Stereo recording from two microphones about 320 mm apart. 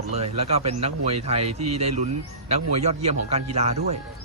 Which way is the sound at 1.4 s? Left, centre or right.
Right.